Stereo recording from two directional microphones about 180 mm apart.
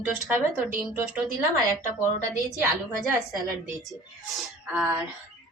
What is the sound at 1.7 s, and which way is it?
Speech, 20° right (ahead or behind).